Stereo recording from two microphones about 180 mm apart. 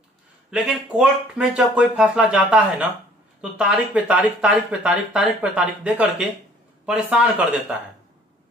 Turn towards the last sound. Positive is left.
turn(degrees=-5)  # may be behind; listen again after turning